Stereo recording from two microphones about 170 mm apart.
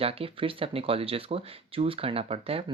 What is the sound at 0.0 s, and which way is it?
Speech, 35° right (ahead or behind).